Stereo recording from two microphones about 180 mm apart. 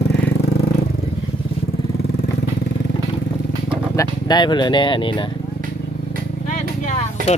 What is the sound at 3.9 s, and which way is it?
Speech, 25° left (ahead or behind).